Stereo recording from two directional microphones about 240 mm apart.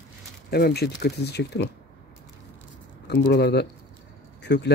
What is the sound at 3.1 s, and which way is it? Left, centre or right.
Speech, left.